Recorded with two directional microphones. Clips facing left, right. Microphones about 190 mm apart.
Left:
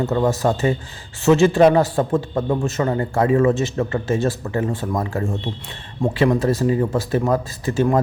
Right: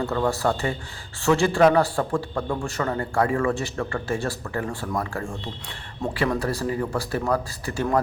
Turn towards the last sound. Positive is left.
turn(degrees=20)  # may be behind; listen again after turning